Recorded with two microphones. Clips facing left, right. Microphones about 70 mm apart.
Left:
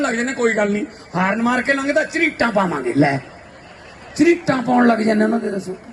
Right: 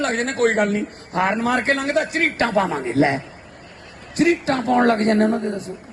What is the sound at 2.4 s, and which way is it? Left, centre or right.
Speech, left.